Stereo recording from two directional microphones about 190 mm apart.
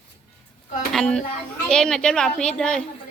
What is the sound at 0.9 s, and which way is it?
A woman's voice, 5° left (ahead or behind).